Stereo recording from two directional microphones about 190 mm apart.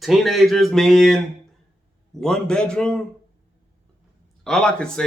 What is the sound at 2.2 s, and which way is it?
Speech, 5° left (ahead or behind).